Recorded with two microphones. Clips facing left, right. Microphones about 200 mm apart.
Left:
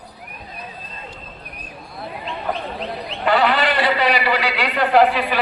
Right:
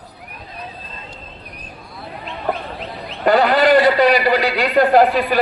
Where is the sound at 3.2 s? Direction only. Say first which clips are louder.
Right 4 dB; 40° right (ahead or behind).